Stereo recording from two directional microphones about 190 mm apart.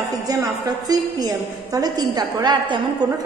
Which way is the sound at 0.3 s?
20° right (ahead or behind).